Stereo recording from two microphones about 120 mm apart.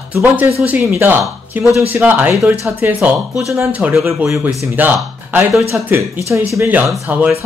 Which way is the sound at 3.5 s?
15° right (ahead or behind).